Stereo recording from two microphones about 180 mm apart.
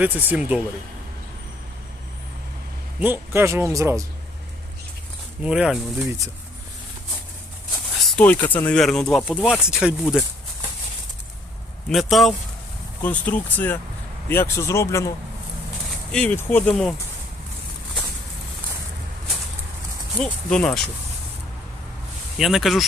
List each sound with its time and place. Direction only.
0.0 s speech: 10° right (ahead or behind)
3.0 s speech: 10° right (ahead or behind)
5.4 s speech: 5° right (ahead or behind)
8.1 s speech: 10° left (ahead or behind)
11.9 s speech: centre (ahead or behind); by 15.1 s 15° left (ahead or behind)
16.1 s speech: 10° left (ahead or behind)
20.1 s speech: 5° left (ahead or behind)
22.4 s speech: centre (ahead or behind)